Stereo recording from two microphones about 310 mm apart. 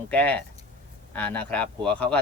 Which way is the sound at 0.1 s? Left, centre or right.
Centre.